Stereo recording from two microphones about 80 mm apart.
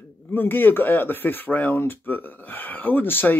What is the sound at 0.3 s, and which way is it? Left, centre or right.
Speech, left.